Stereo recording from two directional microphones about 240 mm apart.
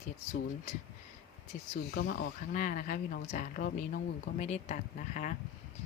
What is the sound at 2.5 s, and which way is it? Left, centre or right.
Speech, left.